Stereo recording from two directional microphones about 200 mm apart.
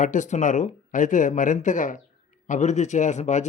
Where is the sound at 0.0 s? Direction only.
40° left (ahead or behind).